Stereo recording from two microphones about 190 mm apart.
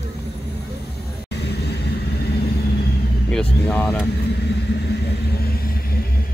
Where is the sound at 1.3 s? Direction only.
60° left (ahead or behind).